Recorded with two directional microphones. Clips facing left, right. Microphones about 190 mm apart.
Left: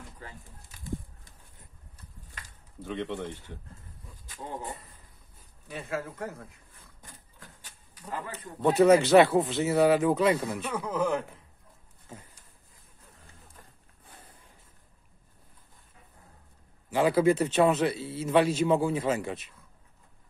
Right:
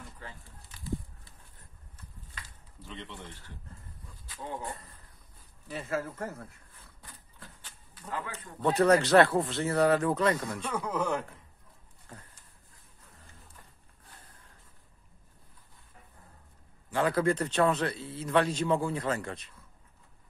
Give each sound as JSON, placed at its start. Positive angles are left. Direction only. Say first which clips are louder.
{"t": 0.7, "sound": "pigeon", "louder": "right 1 dB", "side_deg": 50}
{"t": 2.4, "sound": "a sound", "louder": "left 10 dB", "side_deg": 55}
{"t": 5.7, "sound": "speech", "louder": "right 1 dB", "side_deg": 5}
{"t": 7.6, "sound": "a sound", "louder": "left 2 dB", "side_deg": 10}
{"t": 8.5, "sound": "speech", "louder": "left 4 dB", "side_deg": 20}
{"t": 8.7, "sound": "a man's voice", "louder": "left 3 dB", "side_deg": 5}
{"t": 16.9, "sound": "a man's voice", "louder": "left 4 dB", "side_deg": 10}